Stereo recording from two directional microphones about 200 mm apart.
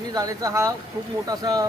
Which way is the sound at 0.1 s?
15° right (ahead or behind).